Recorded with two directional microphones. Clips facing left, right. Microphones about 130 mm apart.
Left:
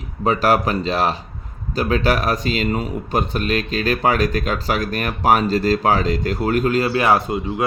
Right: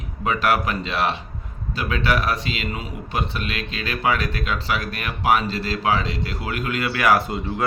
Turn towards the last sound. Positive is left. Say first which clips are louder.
# left 2 dB
turn(degrees=20)  # may be behind; listen again after turning